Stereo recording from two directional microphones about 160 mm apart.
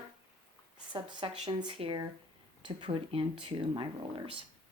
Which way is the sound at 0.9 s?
30° right (ahead or behind).